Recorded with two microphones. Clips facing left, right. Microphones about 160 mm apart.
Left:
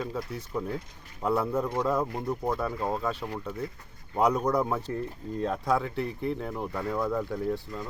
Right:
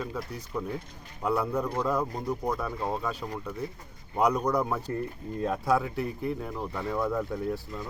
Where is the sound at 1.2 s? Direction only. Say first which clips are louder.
Left 1 dB; centre (ahead or behind).